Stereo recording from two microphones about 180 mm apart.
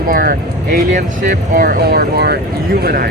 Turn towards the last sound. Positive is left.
turn(degrees=-60)  # may be behind; listen again after turning